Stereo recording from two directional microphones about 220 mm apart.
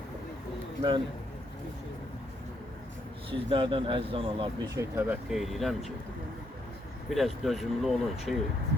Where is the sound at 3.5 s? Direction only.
20° right (ahead or behind).